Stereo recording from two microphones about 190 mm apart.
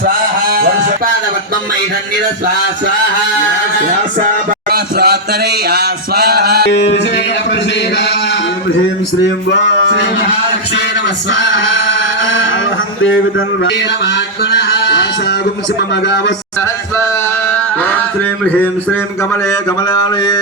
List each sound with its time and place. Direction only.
0.5 s a sound: 55° right (ahead or behind)
4.7 s a man's voice: 55° right (ahead or behind)
5.6 s music: 55° right (ahead or behind)
6.7 s speech: 65° left (ahead or behind)
9.5 s speech: 65° left (ahead or behind)
11.3 s male singing: 80° left
14.5 s a sound: 65° left (ahead or behind)
16.0 s speech: 65° left (ahead or behind)
19.9 s mantra: 20° left (ahead or behind)